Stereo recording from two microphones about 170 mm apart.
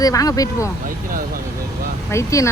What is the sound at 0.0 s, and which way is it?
Speech, 20° left (ahead or behind).